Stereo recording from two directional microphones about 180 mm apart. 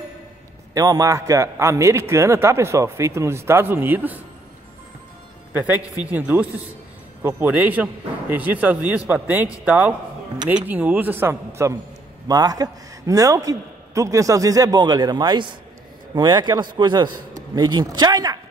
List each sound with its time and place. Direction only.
0.7 s a man's voice: 20° right (ahead or behind)
5.5 s a man's voice: 10° right (ahead or behind)